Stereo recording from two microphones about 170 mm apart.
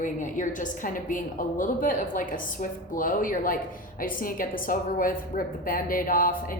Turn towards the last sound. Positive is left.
turn(degrees=55)  # may be behind; listen again after turning